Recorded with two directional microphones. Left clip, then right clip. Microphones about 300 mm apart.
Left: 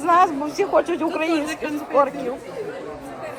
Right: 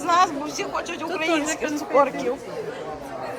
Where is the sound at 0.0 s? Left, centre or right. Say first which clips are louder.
Left 3 dB; centre.